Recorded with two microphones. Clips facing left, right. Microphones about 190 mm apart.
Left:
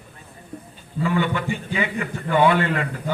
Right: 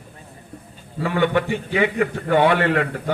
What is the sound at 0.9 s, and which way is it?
A man's voice, 65° right (ahead or behind).